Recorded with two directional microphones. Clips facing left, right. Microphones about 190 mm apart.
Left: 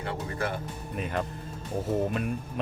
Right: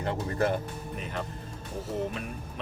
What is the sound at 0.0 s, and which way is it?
Speech, 40° right (ahead or behind).